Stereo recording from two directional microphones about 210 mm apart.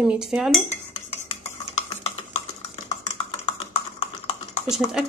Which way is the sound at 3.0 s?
30° left (ahead or behind).